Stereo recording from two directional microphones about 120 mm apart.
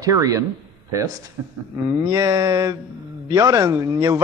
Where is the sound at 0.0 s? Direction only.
30° right (ahead or behind).